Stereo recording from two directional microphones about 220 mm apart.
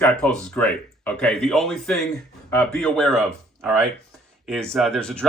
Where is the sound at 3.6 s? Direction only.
10° right (ahead or behind).